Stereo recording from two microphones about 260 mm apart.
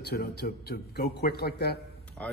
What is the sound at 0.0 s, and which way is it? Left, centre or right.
A man's voice, left.